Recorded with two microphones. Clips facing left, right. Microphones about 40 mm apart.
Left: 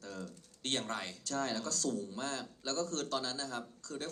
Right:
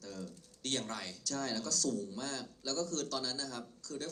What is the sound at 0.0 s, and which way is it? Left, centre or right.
A man's voice, left.